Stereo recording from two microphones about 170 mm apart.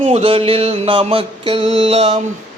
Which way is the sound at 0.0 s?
35° right (ahead or behind).